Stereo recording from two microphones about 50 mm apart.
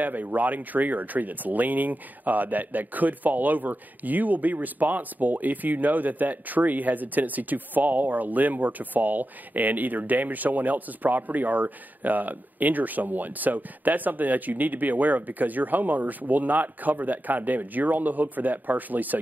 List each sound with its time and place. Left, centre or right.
0.0 s speech: right